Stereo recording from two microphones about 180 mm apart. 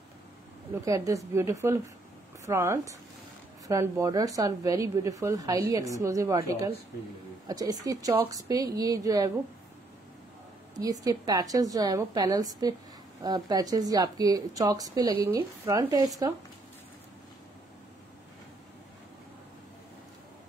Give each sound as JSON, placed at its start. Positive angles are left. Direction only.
{"t": 0.8, "sound": "a woman's voice", "side_deg": -15}
{"t": 10.8, "sound": "a woman's voice", "side_deg": -20}